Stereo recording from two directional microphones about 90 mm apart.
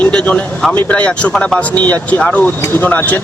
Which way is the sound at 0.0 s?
15° left (ahead or behind).